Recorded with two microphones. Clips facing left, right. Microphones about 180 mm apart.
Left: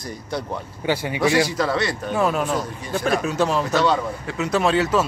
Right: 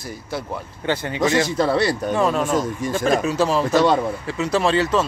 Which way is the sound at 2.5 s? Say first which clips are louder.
Right 4 dB; 45° right (ahead or behind).